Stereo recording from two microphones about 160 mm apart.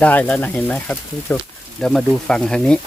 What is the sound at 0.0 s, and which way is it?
Speech, 10° left (ahead or behind).